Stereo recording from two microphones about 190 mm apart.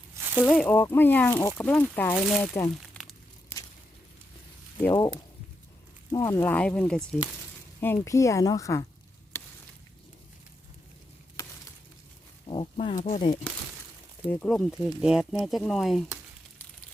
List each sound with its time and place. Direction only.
0.2 s a sound: 10° right (ahead or behind)
0.4 s speech: 5° left (ahead or behind)
2.1 s speech: centre (ahead or behind)
2.5 s speech: 15° left (ahead or behind)
3.5 s a sound: 15° left (ahead or behind)
4.8 s speech: 15° left (ahead or behind)
12.5 s speech: 30° left (ahead or behind)
14.3 s speech: 5° left (ahead or behind)